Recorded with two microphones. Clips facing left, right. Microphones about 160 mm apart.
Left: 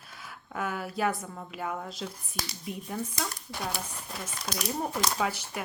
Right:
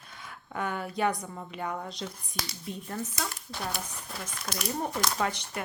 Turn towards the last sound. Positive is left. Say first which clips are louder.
# even
turn(degrees=5)  # may be behind; listen again after turning